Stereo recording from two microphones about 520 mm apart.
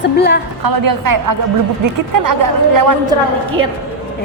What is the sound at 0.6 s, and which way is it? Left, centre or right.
Speech, right.